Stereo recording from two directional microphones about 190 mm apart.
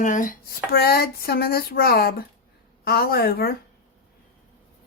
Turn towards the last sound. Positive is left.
turn(degrees=55)  # may be behind; listen again after turning